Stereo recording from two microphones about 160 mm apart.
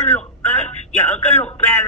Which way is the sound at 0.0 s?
10° left (ahead or behind).